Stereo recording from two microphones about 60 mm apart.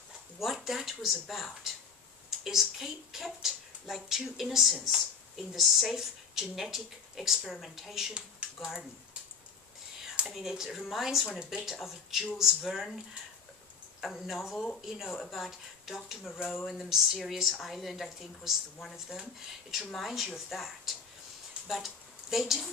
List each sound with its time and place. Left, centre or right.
0.4 s a woman's voice: centre
10.3 s a woman's voice: centre
14.0 s a woman's voice: centre